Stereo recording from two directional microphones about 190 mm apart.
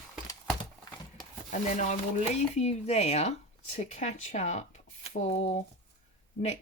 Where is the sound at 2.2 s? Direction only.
35° left (ahead or behind).